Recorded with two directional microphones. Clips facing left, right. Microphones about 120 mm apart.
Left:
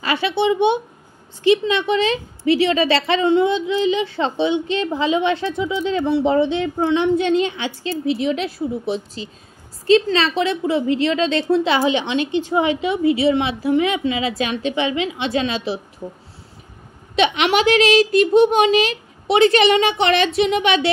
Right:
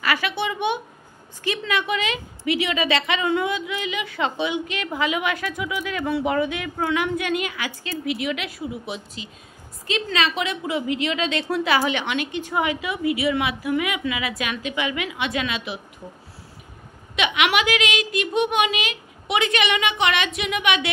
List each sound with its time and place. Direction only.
0.0 s a woman's voice: 25° left (ahead or behind)
17.1 s a child's voice: 35° left (ahead or behind)